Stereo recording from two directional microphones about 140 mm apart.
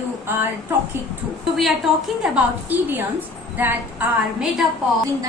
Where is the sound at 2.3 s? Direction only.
15° right (ahead or behind).